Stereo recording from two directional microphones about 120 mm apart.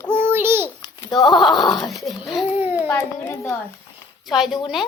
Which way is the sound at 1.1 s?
30° left (ahead or behind).